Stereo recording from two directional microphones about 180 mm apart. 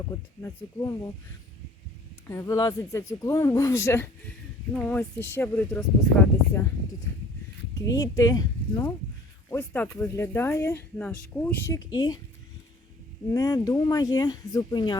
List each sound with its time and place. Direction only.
0.4 s speech: 15° left (ahead or behind)
2.2 s speech: 15° left (ahead or behind)
7.9 s speech: 20° left (ahead or behind)
9.5 s speech: 10° left (ahead or behind)
13.3 s speech: 20° left (ahead or behind)